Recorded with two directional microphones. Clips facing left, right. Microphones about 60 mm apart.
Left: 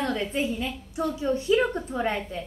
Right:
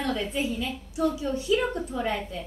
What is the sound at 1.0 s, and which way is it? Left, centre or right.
A woman's voice, left.